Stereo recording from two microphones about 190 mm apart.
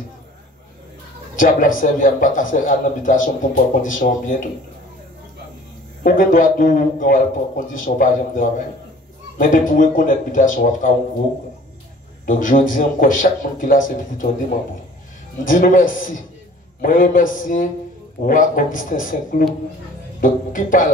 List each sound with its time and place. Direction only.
1.3 s a man's voice: 45° left (ahead or behind)
6.0 s a man's voice: 45° left (ahead or behind)
12.3 s a man's voice: 45° left (ahead or behind)
15.4 s a man's voice: 45° left (ahead or behind)